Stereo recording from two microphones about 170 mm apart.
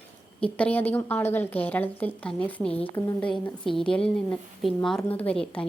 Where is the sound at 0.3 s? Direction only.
5° left (ahead or behind).